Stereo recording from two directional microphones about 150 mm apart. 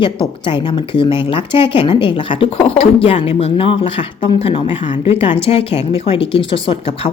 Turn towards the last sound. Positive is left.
turn(degrees=35)  # may be behind; listen again after turning